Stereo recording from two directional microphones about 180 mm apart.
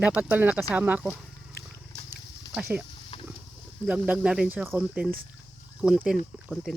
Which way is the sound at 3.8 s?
5° right (ahead or behind).